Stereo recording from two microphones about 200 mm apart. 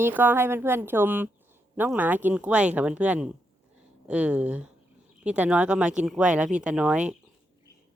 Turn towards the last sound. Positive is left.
turn(degrees=-5)  # may be behind; listen again after turning